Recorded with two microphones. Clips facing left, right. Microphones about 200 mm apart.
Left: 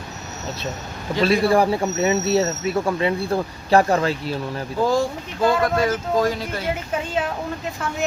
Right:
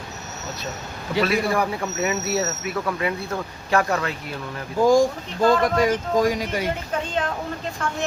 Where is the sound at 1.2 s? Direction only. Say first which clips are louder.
Left 5 dB; 30° left (ahead or behind).